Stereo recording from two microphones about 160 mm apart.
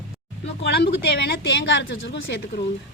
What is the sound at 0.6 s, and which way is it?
Speech, 90° left.